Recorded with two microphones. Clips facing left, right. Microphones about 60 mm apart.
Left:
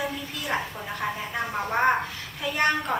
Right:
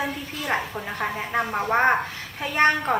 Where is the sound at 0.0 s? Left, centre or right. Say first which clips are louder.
Right 2 dB; right.